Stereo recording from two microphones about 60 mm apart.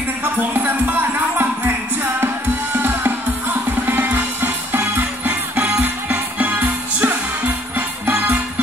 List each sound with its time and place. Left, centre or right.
0.2 s music: right
2.1 s music: right